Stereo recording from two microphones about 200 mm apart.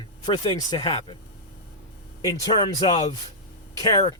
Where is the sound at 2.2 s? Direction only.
20° left (ahead or behind).